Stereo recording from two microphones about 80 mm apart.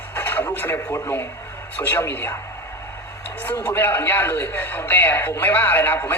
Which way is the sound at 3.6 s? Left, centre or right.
Left.